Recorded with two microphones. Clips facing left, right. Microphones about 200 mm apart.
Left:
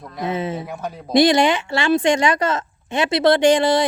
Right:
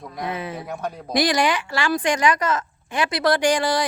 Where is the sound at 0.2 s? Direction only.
25° left (ahead or behind).